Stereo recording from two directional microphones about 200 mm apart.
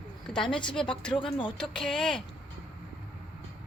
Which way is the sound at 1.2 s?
25° left (ahead or behind).